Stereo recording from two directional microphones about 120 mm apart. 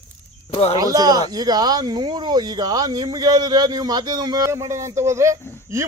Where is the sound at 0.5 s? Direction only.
55° left (ahead or behind).